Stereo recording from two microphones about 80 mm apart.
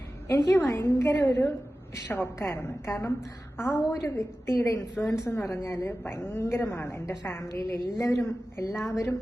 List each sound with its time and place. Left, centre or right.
0.3 s a woman's voice: left
3.8 s a woman's voice: left